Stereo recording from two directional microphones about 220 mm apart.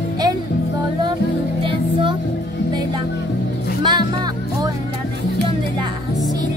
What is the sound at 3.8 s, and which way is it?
Music, 20° right (ahead or behind).